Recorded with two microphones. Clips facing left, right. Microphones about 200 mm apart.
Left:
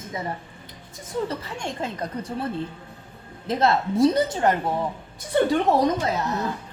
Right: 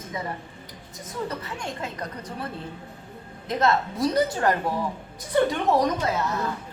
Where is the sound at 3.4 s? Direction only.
30° left (ahead or behind).